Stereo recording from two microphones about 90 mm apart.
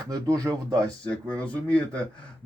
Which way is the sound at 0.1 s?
40° right (ahead or behind).